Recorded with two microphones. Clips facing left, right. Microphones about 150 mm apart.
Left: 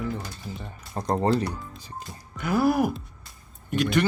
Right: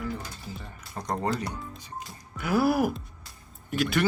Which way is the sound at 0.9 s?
30° left (ahead or behind).